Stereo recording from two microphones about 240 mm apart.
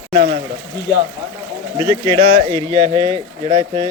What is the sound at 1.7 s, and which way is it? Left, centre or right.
Speech, centre.